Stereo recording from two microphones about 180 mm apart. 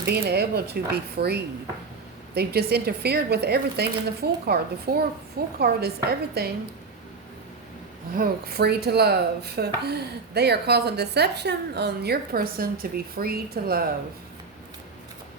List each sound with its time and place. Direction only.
0.0 s speech: 65° right (ahead or behind)
8.1 s speech: 55° right (ahead or behind)